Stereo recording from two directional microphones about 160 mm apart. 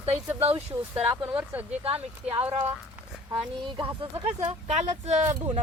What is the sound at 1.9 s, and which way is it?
Speech, 40° right (ahead or behind).